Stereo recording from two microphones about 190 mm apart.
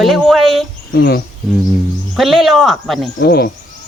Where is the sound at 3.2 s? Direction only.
55° left (ahead or behind).